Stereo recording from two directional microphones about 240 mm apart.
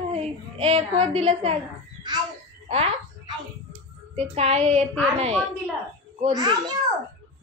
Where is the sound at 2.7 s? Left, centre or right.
Right.